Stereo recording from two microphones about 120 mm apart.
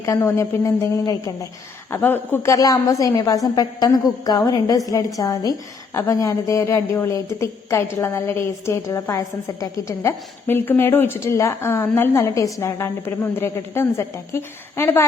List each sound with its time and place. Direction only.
0.0 s a woman's voice: 25° left (ahead or behind)
1.9 s a woman's voice: 15° left (ahead or behind)